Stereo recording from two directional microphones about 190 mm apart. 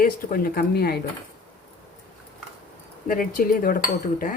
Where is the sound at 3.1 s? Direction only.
45° left (ahead or behind).